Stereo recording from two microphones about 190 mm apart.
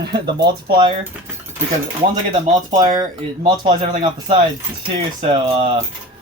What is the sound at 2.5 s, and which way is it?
Speech, 20° right (ahead or behind).